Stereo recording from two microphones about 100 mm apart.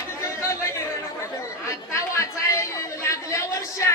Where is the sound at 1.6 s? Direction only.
30° left (ahead or behind).